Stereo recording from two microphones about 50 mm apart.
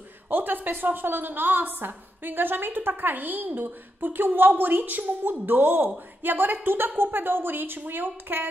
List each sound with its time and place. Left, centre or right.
0.3 s a woman's voice: right